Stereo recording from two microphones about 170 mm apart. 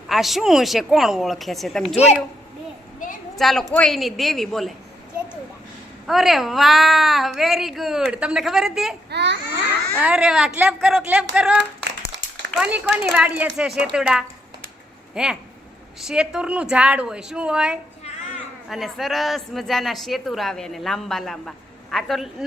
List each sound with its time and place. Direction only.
0.1 s speech: centre (ahead or behind)
3.0 s a sound: 50° left (ahead or behind)
3.3 s speech: centre (ahead or behind)
6.1 s speech: centre (ahead or behind)
9.0 s speech: 85° right
10.0 s speech: 5° right (ahead or behind)
12.5 s a woman's voice: 5° right (ahead or behind)